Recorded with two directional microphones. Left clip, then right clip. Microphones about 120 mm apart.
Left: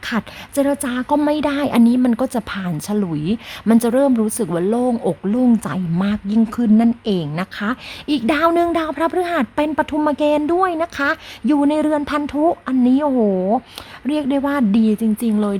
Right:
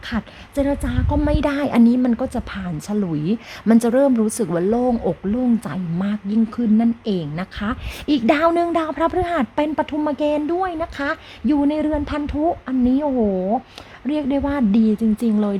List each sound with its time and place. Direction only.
0.1 s speech: 40° left (ahead or behind)
0.5 s a woman's voice: 50° left (ahead or behind)
1.3 s speech: 15° left (ahead or behind)
2.0 s a woman's voice: 35° left (ahead or behind)
5.2 s a woman's voice: 35° left (ahead or behind)
8.0 s a woman's voice: 5° left (ahead or behind)
8.4 s a woman's voice: 15° left (ahead or behind)
11.4 s speech: 35° left (ahead or behind)
14.1 s speech: 20° left (ahead or behind)